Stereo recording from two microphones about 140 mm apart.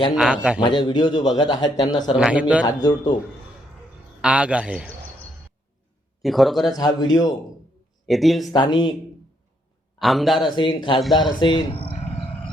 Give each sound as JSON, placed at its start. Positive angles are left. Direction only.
{"t": 0.1, "sound": "a man's voice", "side_deg": -5}
{"t": 0.6, "sound": "a man's voice", "side_deg": 35}
{"t": 2.1, "sound": "a man's voice", "side_deg": -10}
{"t": 2.6, "sound": "a man's voice", "side_deg": 30}
{"t": 4.2, "sound": "a man's voice", "side_deg": -10}
{"t": 6.2, "sound": "speech", "side_deg": 0}
{"t": 6.7, "sound": "a man's voice", "side_deg": 30}
{"t": 8.0, "sound": "speech", "side_deg": 0}
{"t": 8.5, "sound": "a man's voice", "side_deg": 30}
{"t": 10.0, "sound": "speech", "side_deg": 0}
{"t": 10.5, "sound": "a man's voice", "side_deg": 30}
{"t": 11.3, "sound": "a sound", "side_deg": 35}